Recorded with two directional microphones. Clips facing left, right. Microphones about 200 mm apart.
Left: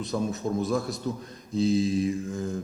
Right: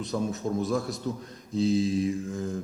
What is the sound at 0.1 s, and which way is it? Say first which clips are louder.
Speech: left 1 dB; 15° left (ahead or behind).